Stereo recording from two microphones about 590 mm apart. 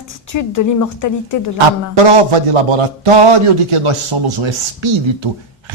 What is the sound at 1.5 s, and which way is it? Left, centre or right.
Speech, right.